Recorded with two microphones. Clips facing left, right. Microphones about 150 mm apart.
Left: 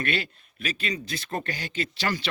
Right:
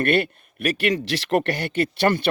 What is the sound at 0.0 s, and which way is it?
A man's voice, 60° right (ahead or behind).